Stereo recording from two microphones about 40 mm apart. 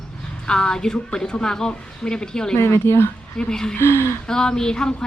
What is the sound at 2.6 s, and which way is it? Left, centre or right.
Speech, left.